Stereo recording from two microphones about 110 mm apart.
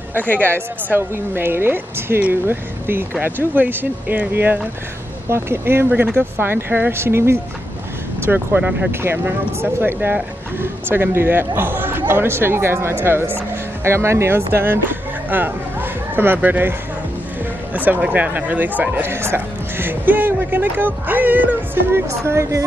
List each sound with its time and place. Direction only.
0.3 s a woman's voice: 20° right (ahead or behind)
17.7 s a woman's voice: 15° right (ahead or behind)